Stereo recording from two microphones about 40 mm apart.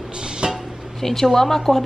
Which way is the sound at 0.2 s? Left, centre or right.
Centre.